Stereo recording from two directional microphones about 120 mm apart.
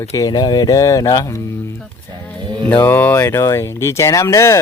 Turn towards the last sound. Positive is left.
turn(degrees=25)  # may be behind; listen again after turning